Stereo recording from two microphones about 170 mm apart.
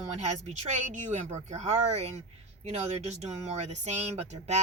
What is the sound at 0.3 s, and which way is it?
Speech, 45° right (ahead or behind).